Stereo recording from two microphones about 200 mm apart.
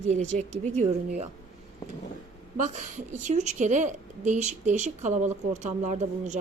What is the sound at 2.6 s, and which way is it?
A woman's voice, 40° right (ahead or behind).